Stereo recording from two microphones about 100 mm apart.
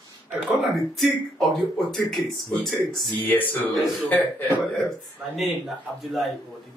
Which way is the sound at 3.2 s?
20° left (ahead or behind).